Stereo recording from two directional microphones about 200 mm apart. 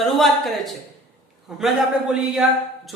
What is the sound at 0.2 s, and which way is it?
Speech, centre (ahead or behind).